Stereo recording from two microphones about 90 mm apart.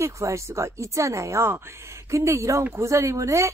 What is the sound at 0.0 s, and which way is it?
A woman's voice, 35° right (ahead or behind).